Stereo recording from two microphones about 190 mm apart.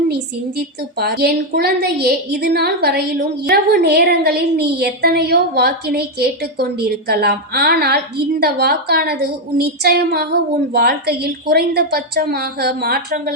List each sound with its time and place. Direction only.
0.1 s speech: 60° right (ahead or behind)